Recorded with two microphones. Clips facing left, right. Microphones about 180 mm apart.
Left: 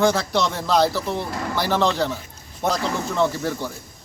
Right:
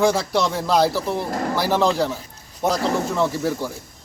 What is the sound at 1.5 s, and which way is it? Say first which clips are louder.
A man's voice: right 1 dB; 5° right (ahead or behind).